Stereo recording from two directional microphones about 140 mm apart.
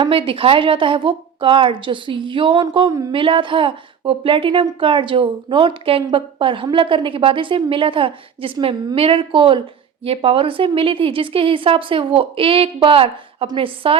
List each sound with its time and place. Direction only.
0.0 s a woman's voice: 40° right (ahead or behind)